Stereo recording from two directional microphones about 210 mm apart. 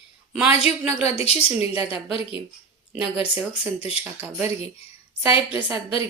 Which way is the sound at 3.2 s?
10° right (ahead or behind).